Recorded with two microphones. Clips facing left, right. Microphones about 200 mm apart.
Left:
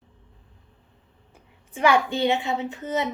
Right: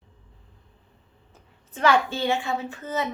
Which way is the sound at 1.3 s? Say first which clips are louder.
Left 3 dB; 10° left (ahead or behind).